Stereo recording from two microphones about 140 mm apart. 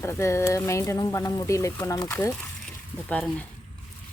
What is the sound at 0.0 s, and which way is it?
Speech, 20° left (ahead or behind).